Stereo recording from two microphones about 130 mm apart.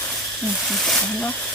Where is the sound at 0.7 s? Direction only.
Centre (ahead or behind).